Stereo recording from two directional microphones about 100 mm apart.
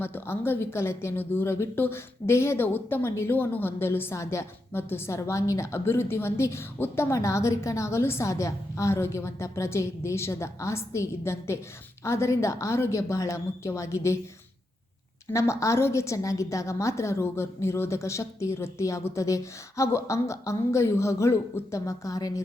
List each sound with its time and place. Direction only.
0.0 s speech: 20° left (ahead or behind)
15.3 s speech: 30° left (ahead or behind)